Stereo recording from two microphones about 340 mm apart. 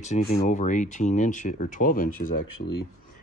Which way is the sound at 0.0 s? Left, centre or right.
Left.